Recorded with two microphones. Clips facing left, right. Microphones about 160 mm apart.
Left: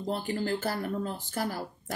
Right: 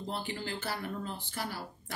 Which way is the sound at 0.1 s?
45° left (ahead or behind).